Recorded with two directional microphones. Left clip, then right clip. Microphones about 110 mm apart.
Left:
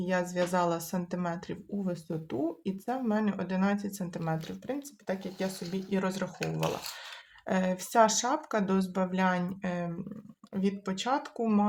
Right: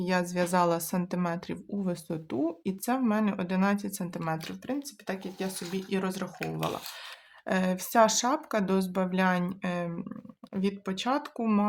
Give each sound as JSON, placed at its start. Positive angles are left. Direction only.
{"t": 0.0, "sound": "speech", "side_deg": -35}
{"t": 4.2, "sound": "speech", "side_deg": -20}